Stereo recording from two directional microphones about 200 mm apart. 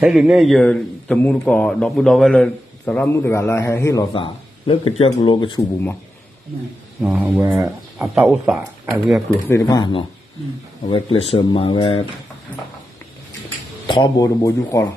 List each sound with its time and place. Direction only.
0.0 s a man's voice: centre (ahead or behind); by 5.7 s 20° left (ahead or behind)
7.0 s a man's voice: 10° right (ahead or behind)
9.5 s speech: 15° left (ahead or behind)
13.8 s speech: 20° left (ahead or behind)